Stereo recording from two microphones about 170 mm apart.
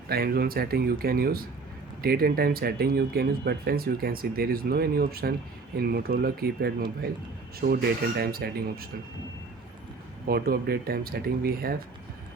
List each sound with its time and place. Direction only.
0.1 s speech: 65° right (ahead or behind)
10.2 s speech: 65° right (ahead or behind)